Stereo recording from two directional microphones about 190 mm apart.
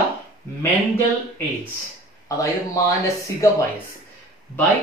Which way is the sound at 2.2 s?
15° left (ahead or behind).